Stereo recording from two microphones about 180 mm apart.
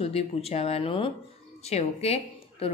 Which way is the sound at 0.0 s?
35° left (ahead or behind).